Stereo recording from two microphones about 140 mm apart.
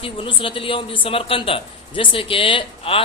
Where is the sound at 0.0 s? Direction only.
40° left (ahead or behind).